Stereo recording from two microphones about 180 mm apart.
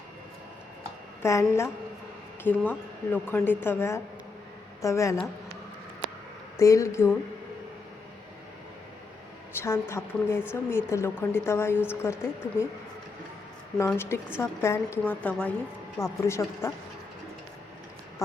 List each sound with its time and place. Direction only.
1.2 s a woman's voice: 15° left (ahead or behind)
6.6 s a woman's voice: 15° left (ahead or behind)
9.6 s a woman's voice: 15° left (ahead or behind)
13.7 s a woman's voice: 15° left (ahead or behind)